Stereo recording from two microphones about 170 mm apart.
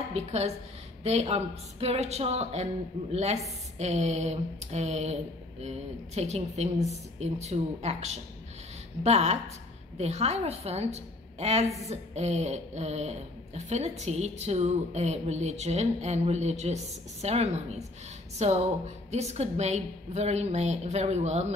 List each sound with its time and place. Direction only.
0.1 s a woman's voice: 40° right (ahead or behind)